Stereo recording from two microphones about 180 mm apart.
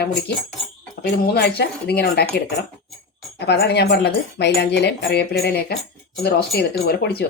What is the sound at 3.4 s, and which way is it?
Speech, 65° left (ahead or behind).